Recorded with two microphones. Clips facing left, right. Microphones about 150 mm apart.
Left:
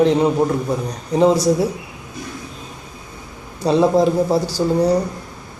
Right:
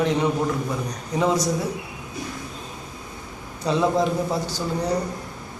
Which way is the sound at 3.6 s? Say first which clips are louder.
Left 6 dB; 35° left (ahead or behind).